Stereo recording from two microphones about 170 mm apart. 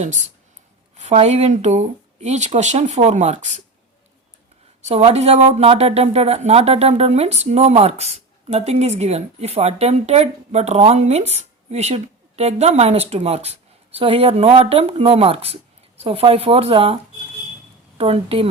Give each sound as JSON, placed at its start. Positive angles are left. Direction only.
{"t": 0.0, "sound": "speech", "side_deg": -45}
{"t": 4.9, "sound": "a woman's voice", "side_deg": -40}